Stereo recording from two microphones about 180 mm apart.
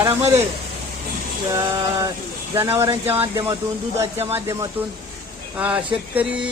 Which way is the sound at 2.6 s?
15° right (ahead or behind).